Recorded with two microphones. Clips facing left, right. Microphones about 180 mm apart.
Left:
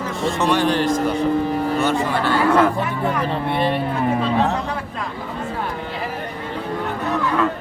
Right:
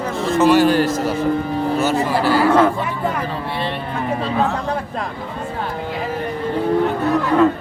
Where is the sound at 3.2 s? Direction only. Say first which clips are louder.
Left 3 dB; 55° left (ahead or behind).